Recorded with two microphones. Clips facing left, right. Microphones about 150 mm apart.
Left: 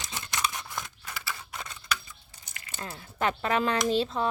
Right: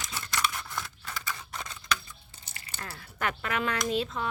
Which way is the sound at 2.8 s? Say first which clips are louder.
Left 4 dB; 25° left (ahead or behind).